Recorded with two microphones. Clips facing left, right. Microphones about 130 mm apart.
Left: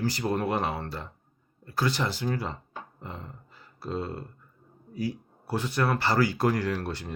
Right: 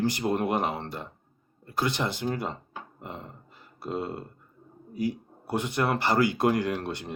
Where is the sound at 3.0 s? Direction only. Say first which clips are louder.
Right 2 dB; 20° right (ahead or behind).